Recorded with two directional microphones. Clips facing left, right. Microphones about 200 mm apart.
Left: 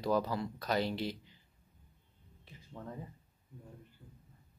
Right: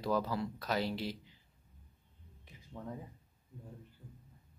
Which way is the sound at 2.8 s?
Centre (ahead or behind).